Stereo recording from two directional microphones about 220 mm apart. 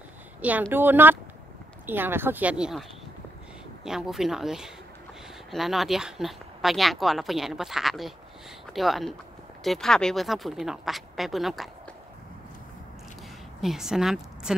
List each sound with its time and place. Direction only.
0.4 s speech: 5° right (ahead or behind)
3.8 s speech: centre (ahead or behind)
13.6 s a woman's voice: centre (ahead or behind)